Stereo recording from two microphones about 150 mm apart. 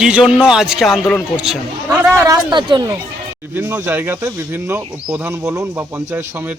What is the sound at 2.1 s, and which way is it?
Speech, 20° right (ahead or behind).